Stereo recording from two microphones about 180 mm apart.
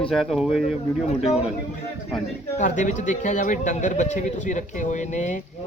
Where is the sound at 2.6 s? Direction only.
45° left (ahead or behind).